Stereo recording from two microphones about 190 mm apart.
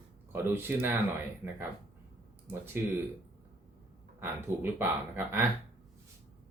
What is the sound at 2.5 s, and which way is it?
Speech, 10° right (ahead or behind).